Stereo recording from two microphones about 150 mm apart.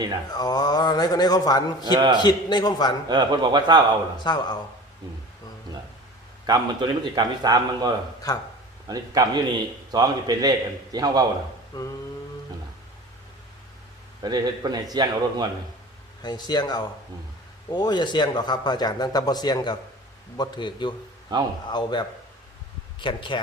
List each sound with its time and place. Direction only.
0.3 s speech: 25° left (ahead or behind)
3.1 s speech: 30° right (ahead or behind)
4.2 s speech: 30° left (ahead or behind)
6.4 s speech: 30° right (ahead or behind)
8.3 s speech: 25° left (ahead or behind)
8.9 s speech: 25° right (ahead or behind)
11.7 s speech: 25° left (ahead or behind)
14.2 s speech: 30° right (ahead or behind)
16.2 s a man's voice: 30° left (ahead or behind)